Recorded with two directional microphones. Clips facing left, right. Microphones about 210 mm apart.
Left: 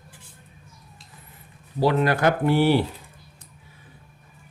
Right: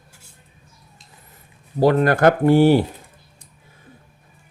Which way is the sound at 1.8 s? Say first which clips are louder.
Right 5 dB; 50° right (ahead or behind).